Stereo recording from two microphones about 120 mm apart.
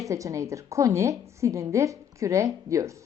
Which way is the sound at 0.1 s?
25° right (ahead or behind).